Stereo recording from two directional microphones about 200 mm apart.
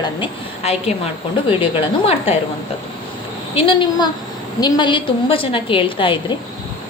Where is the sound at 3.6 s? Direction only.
25° left (ahead or behind).